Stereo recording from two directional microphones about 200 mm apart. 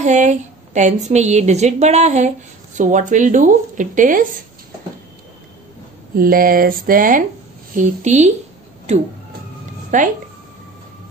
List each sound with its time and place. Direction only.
0.0 s a woman's voice: 35° right (ahead or behind)
6.1 s a woman's voice: 45° right (ahead or behind)
9.9 s a woman's voice: 40° right (ahead or behind)